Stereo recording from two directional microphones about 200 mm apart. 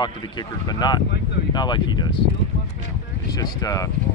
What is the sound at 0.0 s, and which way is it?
Speech, 20° left (ahead or behind).